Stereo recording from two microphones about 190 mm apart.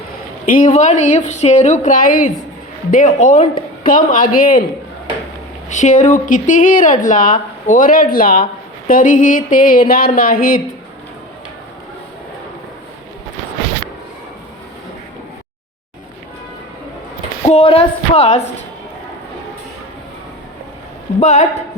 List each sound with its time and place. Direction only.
0.5 s a woman's voice: 40° left (ahead or behind)
5.6 s a woman's voice: 40° left (ahead or behind)
17.4 s a woman's voice: 30° left (ahead or behind)
21.2 s a woman's voice: 40° left (ahead or behind)